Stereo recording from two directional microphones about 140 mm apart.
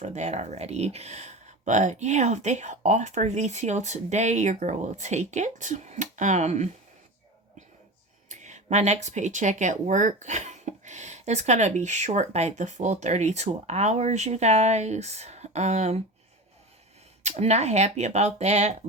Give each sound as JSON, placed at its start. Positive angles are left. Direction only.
{"t": 0.0, "sound": "speech", "side_deg": -55}
{"t": 8.3, "sound": "speech", "side_deg": -60}
{"t": 17.2, "sound": "speech", "side_deg": -55}